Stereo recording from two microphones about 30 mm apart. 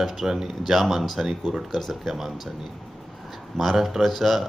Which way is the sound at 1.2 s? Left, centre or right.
Right.